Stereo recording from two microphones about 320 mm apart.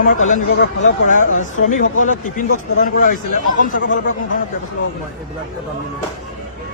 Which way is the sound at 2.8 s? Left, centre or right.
Left.